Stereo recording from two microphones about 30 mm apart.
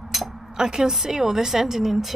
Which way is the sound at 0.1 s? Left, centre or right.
Centre.